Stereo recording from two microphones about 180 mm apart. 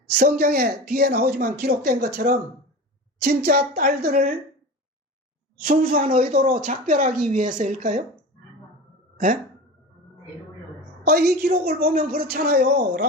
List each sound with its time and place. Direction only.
0.2 s speech: 55° right (ahead or behind)
5.6 s speech: 55° right (ahead or behind)
9.1 s speech: 50° right (ahead or behind)
11.0 s speech: 60° right (ahead or behind)